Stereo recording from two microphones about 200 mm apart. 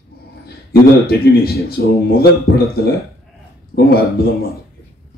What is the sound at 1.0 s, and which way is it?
A man's voice, 50° left (ahead or behind).